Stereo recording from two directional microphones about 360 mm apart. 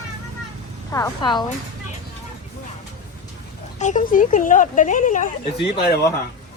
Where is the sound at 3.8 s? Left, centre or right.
Left.